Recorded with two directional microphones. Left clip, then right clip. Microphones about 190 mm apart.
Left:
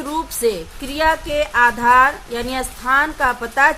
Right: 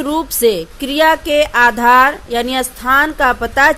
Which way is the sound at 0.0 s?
30° right (ahead or behind).